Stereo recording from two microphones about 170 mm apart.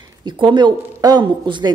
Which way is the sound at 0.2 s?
25° right (ahead or behind).